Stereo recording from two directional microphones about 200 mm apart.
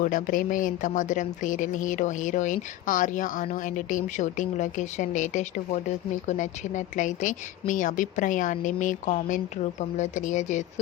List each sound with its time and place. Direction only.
0.0 s speech: 40° left (ahead or behind)